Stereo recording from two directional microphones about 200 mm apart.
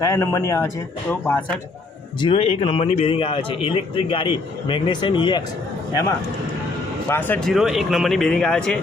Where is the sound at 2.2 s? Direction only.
25° left (ahead or behind).